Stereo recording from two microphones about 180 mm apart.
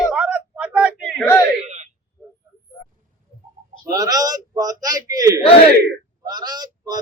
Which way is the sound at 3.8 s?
20° right (ahead or behind).